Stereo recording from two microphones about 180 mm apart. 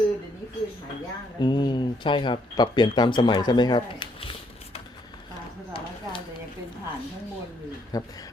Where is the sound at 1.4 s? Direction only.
25° left (ahead or behind).